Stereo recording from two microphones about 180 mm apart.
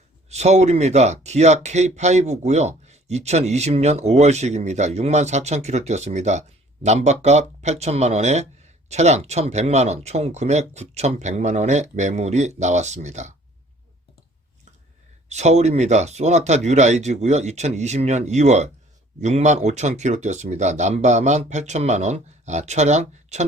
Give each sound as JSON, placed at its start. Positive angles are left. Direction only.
{"t": 0.3, "sound": "speech", "side_deg": -40}
{"t": 15.3, "sound": "speech", "side_deg": -40}